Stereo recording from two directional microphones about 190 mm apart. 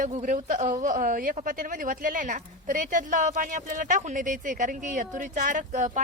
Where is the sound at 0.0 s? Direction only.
40° right (ahead or behind).